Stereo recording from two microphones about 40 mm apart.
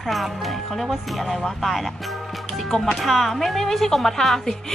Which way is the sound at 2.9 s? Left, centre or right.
Centre.